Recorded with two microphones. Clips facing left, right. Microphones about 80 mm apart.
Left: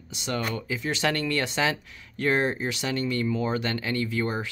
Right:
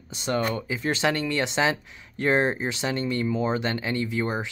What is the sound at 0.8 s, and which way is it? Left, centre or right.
Speech, right.